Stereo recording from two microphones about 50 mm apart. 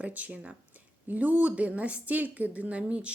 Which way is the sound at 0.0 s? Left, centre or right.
Right.